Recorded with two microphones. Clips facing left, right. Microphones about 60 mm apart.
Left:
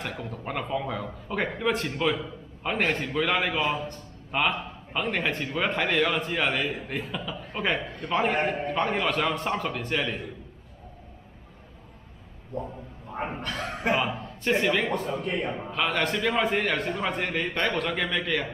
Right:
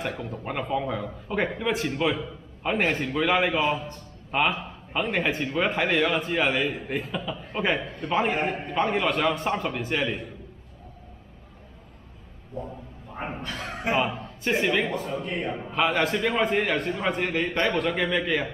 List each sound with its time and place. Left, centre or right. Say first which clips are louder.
0.0 s speech: right 3 dB; centre
13.4 s a sound: left 2 dB; left
14.4 s speech: even; centre